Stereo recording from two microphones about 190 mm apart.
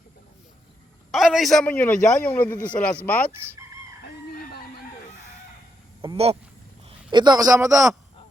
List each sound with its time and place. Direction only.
1.1 s a man's voice: centre (ahead or behind)
6.0 s a man's voice: 30° right (ahead or behind)